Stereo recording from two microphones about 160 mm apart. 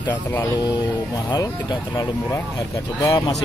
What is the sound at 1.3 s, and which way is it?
Speech, 25° left (ahead or behind).